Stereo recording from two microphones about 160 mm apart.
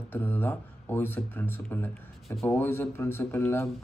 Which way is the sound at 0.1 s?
10° left (ahead or behind).